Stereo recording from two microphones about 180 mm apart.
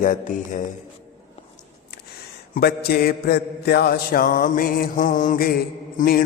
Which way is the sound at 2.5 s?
60° left (ahead or behind).